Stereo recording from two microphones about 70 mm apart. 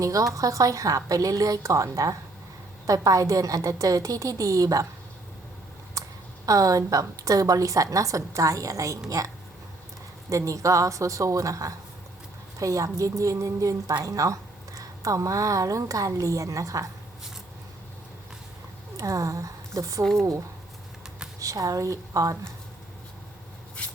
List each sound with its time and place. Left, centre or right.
0.0 s a woman's voice: right
6.0 s a sound: right
6.4 s a woman's voice: right
18.9 s speech: right
21.3 s a woman's voice: right